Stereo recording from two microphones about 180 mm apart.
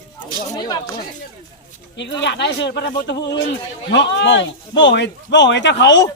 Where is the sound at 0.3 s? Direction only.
20° left (ahead or behind).